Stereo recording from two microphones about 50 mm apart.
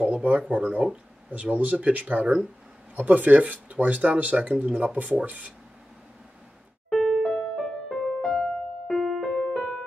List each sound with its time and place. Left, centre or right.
0.0 s speech: right
6.9 s music: centre